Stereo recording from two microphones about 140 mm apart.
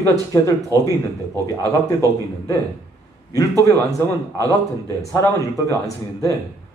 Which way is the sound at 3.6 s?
25° left (ahead or behind).